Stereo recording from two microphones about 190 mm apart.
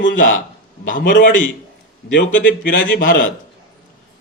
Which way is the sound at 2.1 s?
70° left (ahead or behind).